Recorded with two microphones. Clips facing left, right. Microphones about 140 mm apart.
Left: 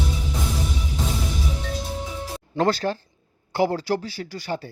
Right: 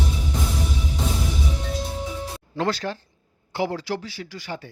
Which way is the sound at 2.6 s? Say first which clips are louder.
Left 4 dB; 35° left (ahead or behind).